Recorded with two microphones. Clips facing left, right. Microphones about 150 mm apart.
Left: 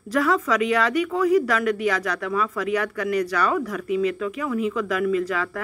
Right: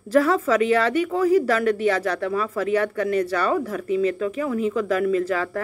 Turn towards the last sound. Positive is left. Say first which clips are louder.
# right 2 dB
turn(degrees=-35)  # may be behind; listen again after turning